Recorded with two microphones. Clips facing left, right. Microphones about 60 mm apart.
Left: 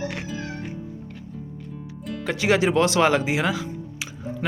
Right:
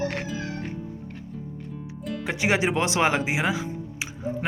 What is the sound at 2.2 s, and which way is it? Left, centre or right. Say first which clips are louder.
Speech: left 3 dB; right.